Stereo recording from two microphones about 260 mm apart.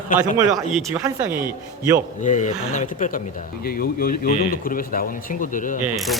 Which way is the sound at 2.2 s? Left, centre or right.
Left.